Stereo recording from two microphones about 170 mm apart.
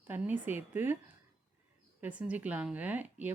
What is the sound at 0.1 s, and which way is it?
Speech, 10° right (ahead or behind).